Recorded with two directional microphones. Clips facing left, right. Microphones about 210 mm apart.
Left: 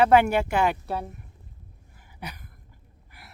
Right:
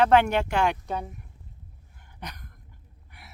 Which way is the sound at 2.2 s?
5° left (ahead or behind).